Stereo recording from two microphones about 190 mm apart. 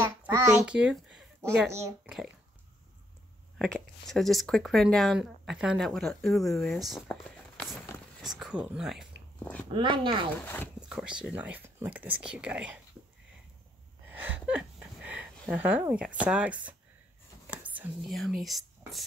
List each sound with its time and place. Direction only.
0.0 s a sound: 10° right (ahead or behind)
2.1 s a child's voice: 10° right (ahead or behind)
3.5 s speech: centre (ahead or behind)
8.2 s speech: centre (ahead or behind)
9.4 s speech: 10° left (ahead or behind)
9.7 s speech: 25° right (ahead or behind)
10.3 s speech: 10° left (ahead or behind)
10.8 s speech: 5° right (ahead or behind)
14.0 s speech: 10° right (ahead or behind)